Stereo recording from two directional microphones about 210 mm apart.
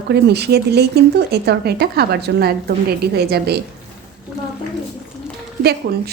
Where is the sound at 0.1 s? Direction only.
50° right (ahead or behind).